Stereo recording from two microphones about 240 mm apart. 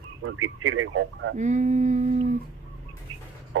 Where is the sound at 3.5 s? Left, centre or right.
Right.